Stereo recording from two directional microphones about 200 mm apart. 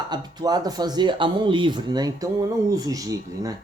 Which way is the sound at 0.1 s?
20° right (ahead or behind).